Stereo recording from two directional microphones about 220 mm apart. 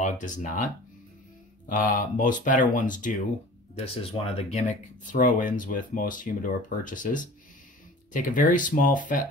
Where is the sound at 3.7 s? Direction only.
25° left (ahead or behind).